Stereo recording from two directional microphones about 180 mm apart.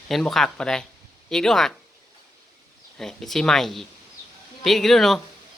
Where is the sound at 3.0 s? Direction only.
Centre (ahead or behind).